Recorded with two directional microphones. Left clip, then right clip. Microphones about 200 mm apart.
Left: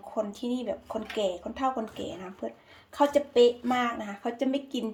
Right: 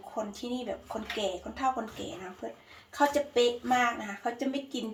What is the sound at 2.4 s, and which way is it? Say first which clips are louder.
Speech: left 3 dB; 50° left (ahead or behind).